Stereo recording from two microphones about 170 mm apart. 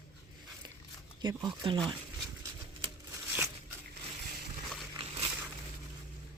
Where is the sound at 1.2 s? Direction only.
25° right (ahead or behind).